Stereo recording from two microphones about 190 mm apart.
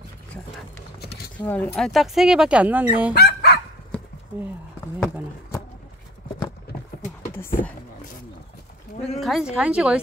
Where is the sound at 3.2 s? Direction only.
60° left (ahead or behind).